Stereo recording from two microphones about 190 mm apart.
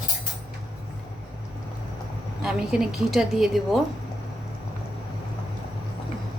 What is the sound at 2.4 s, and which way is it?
A woman's voice, 5° right (ahead or behind).